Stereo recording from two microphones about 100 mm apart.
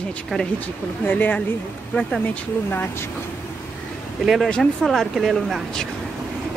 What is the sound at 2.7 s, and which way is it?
Speech, 20° left (ahead or behind).